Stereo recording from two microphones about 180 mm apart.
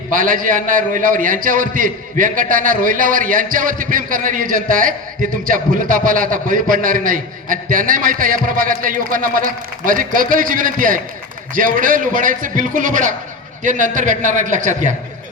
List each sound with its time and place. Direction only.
0.1 s a man's voice: 50° right (ahead or behind)